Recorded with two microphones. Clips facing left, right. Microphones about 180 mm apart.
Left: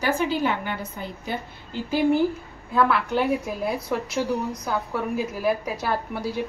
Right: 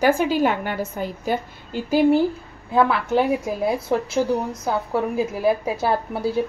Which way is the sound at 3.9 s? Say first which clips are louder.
Right 5 dB; 30° right (ahead or behind).